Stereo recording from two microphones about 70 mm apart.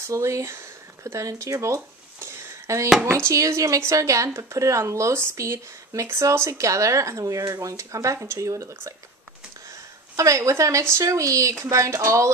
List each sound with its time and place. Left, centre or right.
0.0 s a sound: right
3.3 s speech: right
10.1 s speech: right